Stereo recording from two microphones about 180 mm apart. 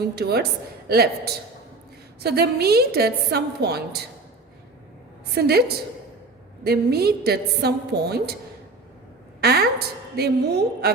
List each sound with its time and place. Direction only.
0.2 s a woman's voice: 60° right (ahead or behind)
5.3 s a woman's voice: 60° right (ahead or behind)
9.4 s a woman's voice: 60° right (ahead or behind)